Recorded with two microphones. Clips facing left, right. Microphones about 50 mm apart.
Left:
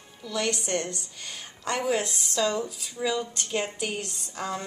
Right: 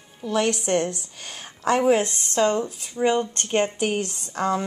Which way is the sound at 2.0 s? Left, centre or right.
Right.